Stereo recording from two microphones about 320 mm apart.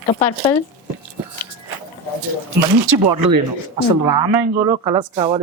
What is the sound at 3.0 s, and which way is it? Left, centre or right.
Speech, right.